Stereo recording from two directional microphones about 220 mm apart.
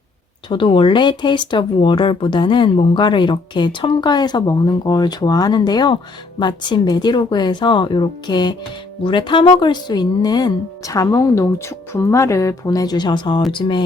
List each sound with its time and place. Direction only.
0.4 s speech: 20° left (ahead or behind)